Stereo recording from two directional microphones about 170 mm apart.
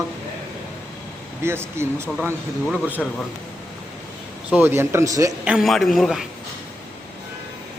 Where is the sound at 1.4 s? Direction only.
15° right (ahead or behind).